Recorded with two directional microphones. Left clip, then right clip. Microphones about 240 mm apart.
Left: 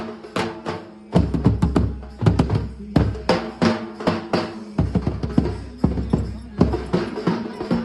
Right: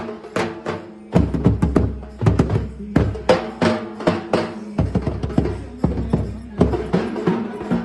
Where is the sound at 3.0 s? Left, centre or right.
Left.